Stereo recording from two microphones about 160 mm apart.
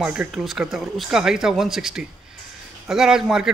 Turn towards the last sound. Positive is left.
turn(degrees=-5)  # may be behind; listen again after turning